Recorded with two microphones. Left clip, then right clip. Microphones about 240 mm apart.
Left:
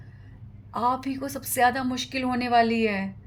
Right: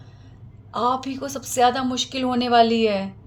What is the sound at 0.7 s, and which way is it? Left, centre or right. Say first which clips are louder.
Speech: right 3 dB; left.